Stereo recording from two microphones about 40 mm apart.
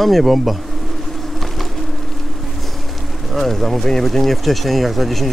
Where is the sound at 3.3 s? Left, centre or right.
Centre.